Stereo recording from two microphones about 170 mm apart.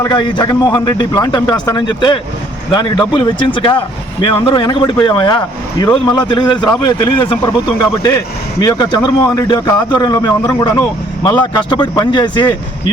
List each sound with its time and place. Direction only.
0.0 s speech: 25° left (ahead or behind)